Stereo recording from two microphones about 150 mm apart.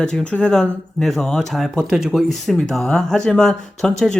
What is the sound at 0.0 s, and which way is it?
Speech, 5° left (ahead or behind).